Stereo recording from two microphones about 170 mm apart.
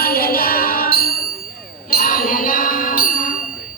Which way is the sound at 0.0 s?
60° left (ahead or behind).